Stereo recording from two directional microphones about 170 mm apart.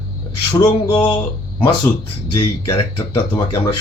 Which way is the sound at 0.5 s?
25° left (ahead or behind).